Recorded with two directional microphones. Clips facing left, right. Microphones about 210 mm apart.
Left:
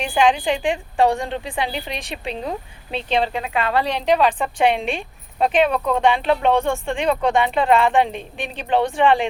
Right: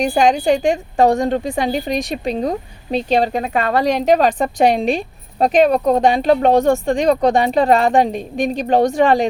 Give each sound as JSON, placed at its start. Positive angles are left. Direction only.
{"t": 0.0, "sound": "a woman's voice", "side_deg": -40}